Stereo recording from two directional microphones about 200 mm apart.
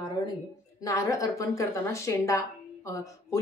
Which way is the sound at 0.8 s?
15° left (ahead or behind).